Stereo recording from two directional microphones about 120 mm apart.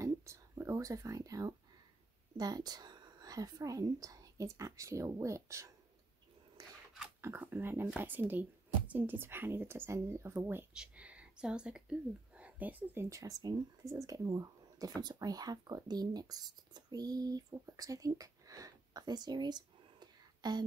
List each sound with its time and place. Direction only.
0.0 s a sound: 25° right (ahead or behind)
2.3 s speech: 35° right (ahead or behind)
7.2 s a woman's voice: 20° right (ahead or behind)
10.7 s speech: 10° right (ahead or behind); by 20.6 s 35° right (ahead or behind)